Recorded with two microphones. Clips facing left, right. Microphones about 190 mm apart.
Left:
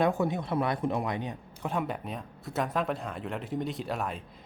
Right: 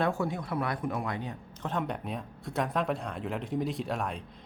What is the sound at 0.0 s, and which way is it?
Speech, 20° left (ahead or behind).